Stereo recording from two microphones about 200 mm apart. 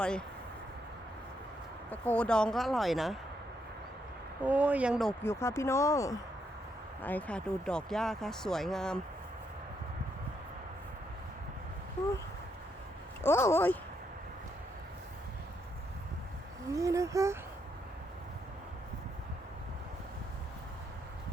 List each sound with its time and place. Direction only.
0.0 s speech: 5° left (ahead or behind)
1.9 s speech: 10° left (ahead or behind)
4.4 s speech: 10° right (ahead or behind)
5.2 s speech: 15° left (ahead or behind)
13.2 s speech: 10° left (ahead or behind)
16.7 s speech: 15° right (ahead or behind)